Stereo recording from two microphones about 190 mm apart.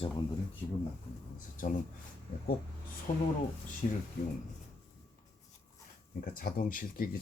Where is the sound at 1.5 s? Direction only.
45° left (ahead or behind).